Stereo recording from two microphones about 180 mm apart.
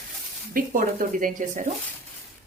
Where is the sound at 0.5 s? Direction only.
50° right (ahead or behind).